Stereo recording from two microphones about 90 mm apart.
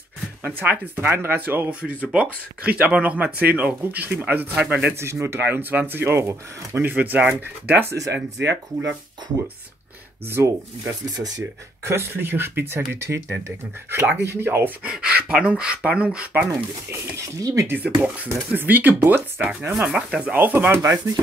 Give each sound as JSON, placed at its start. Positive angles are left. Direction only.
{"t": 0.6, "sound": "speech", "side_deg": -20}
{"t": 4.9, "sound": "speech", "side_deg": -30}
{"t": 7.9, "sound": "speech", "side_deg": -35}
{"t": 10.4, "sound": "speech", "side_deg": -25}
{"t": 10.8, "sound": "speech", "side_deg": -50}
{"t": 11.8, "sound": "speech", "side_deg": -30}
{"t": 14.8, "sound": "speech", "side_deg": -10}
{"t": 16.4, "sound": "speech", "side_deg": -35}
{"t": 17.6, "sound": "speech", "side_deg": -20}
{"t": 19.8, "sound": "speech", "side_deg": -10}